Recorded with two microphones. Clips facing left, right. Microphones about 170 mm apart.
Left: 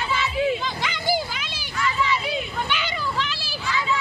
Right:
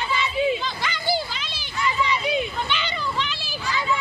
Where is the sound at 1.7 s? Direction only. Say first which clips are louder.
Even; 20° right (ahead or behind).